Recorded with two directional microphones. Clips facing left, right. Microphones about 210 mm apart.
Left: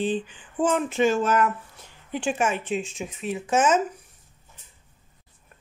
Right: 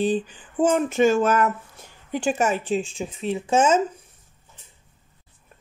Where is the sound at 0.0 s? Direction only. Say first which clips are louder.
Right 3 dB; 40° right (ahead or behind).